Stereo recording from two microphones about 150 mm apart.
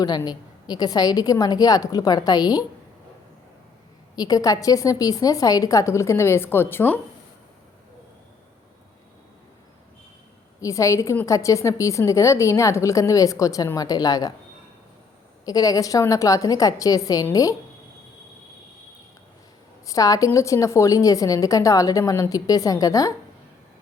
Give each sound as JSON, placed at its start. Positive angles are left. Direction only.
{"t": 0.2, "sound": "a woman's voice", "side_deg": 25}
{"t": 4.1, "sound": "a woman's voice", "side_deg": 25}
{"t": 10.6, "sound": "a woman's voice", "side_deg": 20}
{"t": 15.4, "sound": "a woman's voice", "side_deg": 25}
{"t": 19.8, "sound": "a woman's voice", "side_deg": 25}